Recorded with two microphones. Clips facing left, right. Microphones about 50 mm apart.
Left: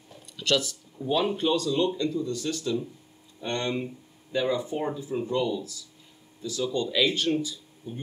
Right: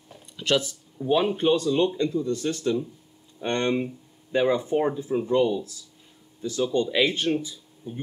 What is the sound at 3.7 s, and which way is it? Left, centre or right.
Speech, right.